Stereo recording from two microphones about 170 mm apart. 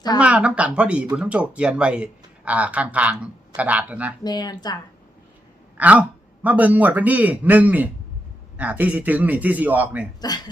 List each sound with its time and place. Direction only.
0.2 s speech: 5° right (ahead or behind)
4.2 s speech: 25° left (ahead or behind)
5.7 s speech: 10° right (ahead or behind)
10.2 s speech: 25° left (ahead or behind)